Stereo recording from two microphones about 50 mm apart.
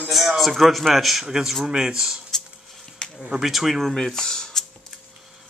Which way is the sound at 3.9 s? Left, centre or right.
Centre.